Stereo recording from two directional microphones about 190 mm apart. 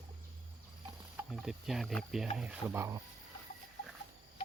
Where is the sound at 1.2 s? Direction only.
Centre (ahead or behind).